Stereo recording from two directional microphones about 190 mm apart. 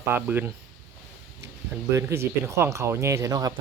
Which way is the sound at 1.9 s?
15° right (ahead or behind).